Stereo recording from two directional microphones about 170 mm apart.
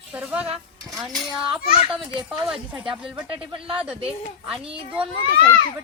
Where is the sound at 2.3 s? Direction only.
Centre (ahead or behind).